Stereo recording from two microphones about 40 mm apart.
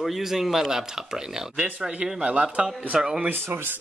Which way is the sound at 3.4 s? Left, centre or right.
Right.